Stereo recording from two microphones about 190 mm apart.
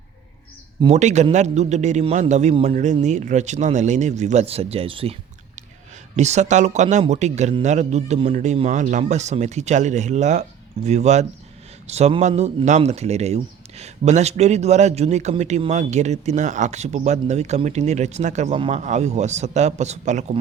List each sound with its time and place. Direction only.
0.8 s speech: 35° right (ahead or behind)
6.1 s speech: 35° right (ahead or behind)